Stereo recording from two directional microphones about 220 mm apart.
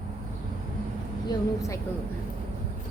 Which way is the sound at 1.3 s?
15° left (ahead or behind).